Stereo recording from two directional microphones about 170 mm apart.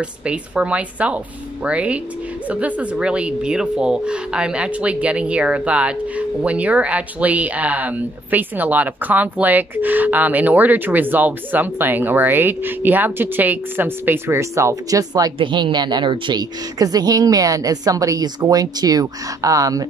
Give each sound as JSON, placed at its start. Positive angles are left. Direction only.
{"t": 0.0, "sound": "a woman's voice", "side_deg": -5}